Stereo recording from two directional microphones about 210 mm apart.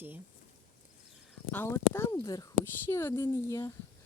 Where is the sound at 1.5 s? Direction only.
10° left (ahead or behind).